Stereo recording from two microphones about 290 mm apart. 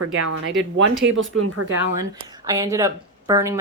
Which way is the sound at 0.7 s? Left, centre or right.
Right.